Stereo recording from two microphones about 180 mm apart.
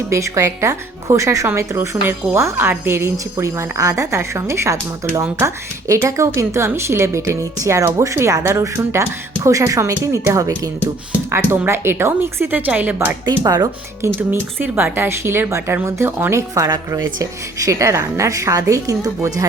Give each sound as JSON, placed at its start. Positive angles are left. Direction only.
{"t": 0.1, "sound": "speech", "side_deg": -15}
{"t": 13.2, "sound": "speech", "side_deg": -20}